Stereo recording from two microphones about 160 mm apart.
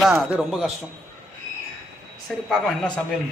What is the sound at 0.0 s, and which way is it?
Speech, centre (ahead or behind).